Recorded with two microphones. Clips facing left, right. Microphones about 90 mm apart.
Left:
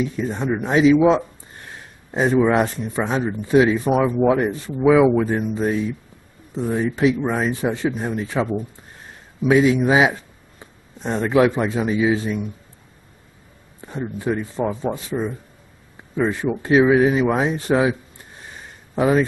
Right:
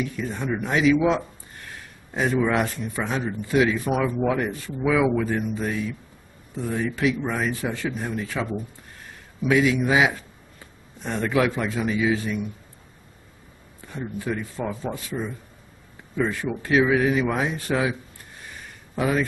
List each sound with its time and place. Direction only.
0.1 s speech: 25° left (ahead or behind)
9.5 s a man's voice: 25° left (ahead or behind)
13.7 s speech: 25° left (ahead or behind)